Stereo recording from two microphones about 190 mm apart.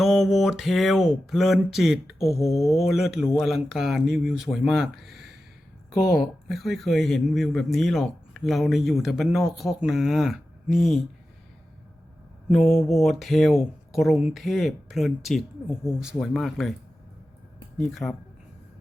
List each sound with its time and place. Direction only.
0.0 s speech: centre (ahead or behind)
2.2 s speech: 15° left (ahead or behind)
2.6 s speech: centre (ahead or behind)
5.9 s speech: 20° left (ahead or behind)
6.1 s speech: centre (ahead or behind)
12.5 s speech: centre (ahead or behind)
17.7 s speech: centre (ahead or behind)